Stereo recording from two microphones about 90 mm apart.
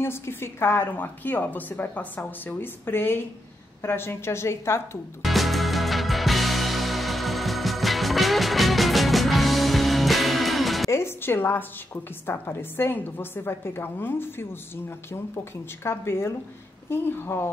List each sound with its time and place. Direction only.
0.0 s a woman's voice: 25° left (ahead or behind)
5.2 s music: centre (ahead or behind)
10.9 s a woman's voice: 30° left (ahead or behind)